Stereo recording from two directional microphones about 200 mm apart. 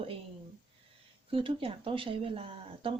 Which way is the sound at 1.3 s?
25° right (ahead or behind).